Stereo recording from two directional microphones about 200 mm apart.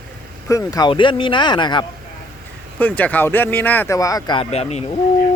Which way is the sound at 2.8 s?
10° left (ahead or behind).